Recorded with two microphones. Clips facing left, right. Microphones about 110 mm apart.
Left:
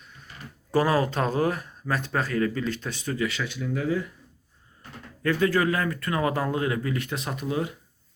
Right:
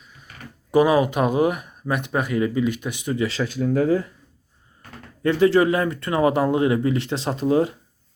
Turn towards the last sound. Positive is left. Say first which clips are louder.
# right 9 dB
turn(degrees=-30)  # may be behind; listen again after turning